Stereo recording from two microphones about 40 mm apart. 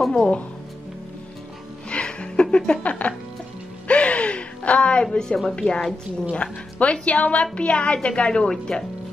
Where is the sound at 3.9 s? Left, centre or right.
Left.